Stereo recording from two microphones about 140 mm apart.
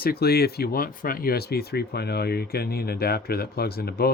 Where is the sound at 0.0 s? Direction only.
90° left.